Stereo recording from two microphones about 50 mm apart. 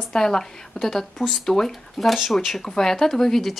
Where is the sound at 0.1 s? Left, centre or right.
Centre.